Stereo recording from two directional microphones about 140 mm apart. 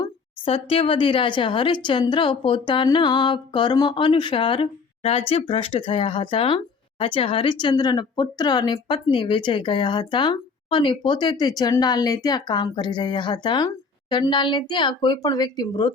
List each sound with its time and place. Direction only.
0.4 s speech: 40° left (ahead or behind)